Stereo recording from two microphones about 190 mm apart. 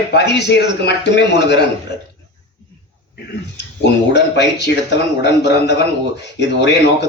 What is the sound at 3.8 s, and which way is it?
A man's voice, 65° left (ahead or behind).